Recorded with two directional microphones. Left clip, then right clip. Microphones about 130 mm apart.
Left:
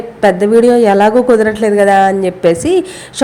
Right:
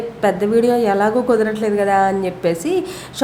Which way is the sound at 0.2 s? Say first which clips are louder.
Left 7 dB; 30° left (ahead or behind).